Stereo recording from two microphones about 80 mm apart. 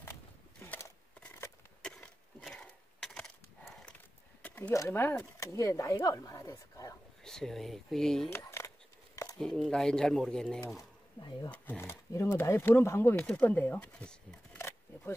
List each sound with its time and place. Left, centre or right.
1.8 s splinter: centre
4.4 s a sound: centre
4.7 s a woman's voice: left
7.2 s speech: centre
8.3 s camera: left
9.4 s speech: centre
11.1 s speech: left
11.5 s speech: left
11.8 s speech: left
13.2 s speech: centre